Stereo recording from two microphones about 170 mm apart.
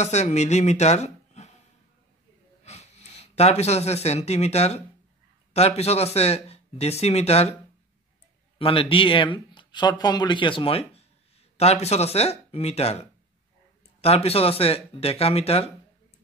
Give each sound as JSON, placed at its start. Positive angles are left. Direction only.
{"t": 0.0, "sound": "speech", "side_deg": 40}
{"t": 2.6, "sound": "speech", "side_deg": 40}
{"t": 8.5, "sound": "speech", "side_deg": 30}
{"t": 14.0, "sound": "speech", "side_deg": 35}